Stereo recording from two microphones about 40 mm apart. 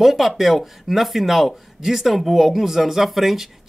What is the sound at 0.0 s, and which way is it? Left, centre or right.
Speech, centre.